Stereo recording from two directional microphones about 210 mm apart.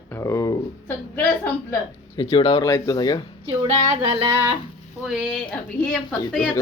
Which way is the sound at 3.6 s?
25° right (ahead or behind).